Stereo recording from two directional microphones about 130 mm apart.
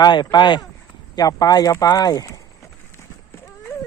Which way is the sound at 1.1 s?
30° left (ahead or behind).